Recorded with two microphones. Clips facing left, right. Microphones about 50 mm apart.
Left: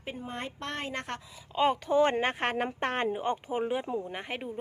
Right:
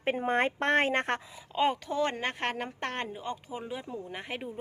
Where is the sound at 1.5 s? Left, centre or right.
Centre.